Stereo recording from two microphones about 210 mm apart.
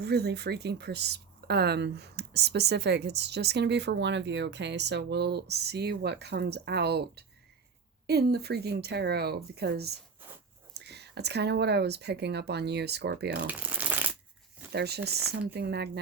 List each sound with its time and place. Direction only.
0.0 s speech: 50° right (ahead or behind)
13.5 s shuffling cards: 5° right (ahead or behind)
14.7 s speech: 50° right (ahead or behind)